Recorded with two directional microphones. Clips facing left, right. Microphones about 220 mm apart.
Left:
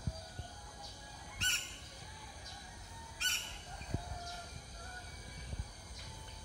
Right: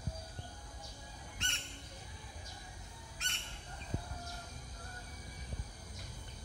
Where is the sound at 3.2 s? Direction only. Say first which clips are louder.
Right 2 dB; 35° left (ahead or behind).